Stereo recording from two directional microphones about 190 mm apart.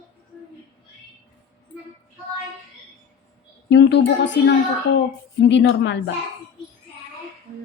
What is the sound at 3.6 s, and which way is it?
A woman's voice, 65° left (ahead or behind).